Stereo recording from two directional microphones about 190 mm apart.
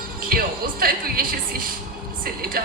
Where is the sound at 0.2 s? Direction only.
50° right (ahead or behind).